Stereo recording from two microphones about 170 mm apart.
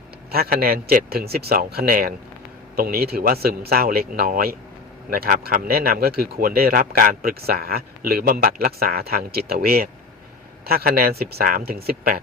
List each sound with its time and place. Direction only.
0.3 s speech: 65° right (ahead or behind)